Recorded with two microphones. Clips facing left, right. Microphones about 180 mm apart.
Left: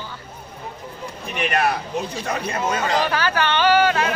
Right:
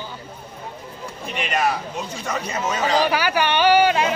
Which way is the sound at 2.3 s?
55° left (ahead or behind).